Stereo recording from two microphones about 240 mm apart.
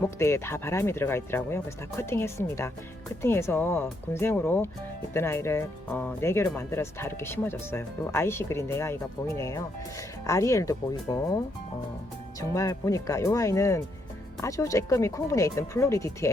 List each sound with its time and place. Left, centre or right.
0.0 s speech: centre
12.4 s speech: centre